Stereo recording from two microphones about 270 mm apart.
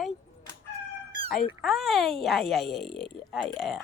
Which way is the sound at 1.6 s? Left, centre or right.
Centre.